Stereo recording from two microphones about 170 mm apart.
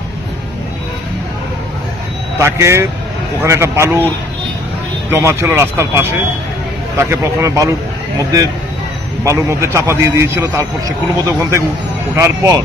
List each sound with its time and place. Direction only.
2.4 s a man's voice: 15° right (ahead or behind)
5.1 s a man's voice: 15° right (ahead or behind)
9.2 s a man's voice: 15° right (ahead or behind)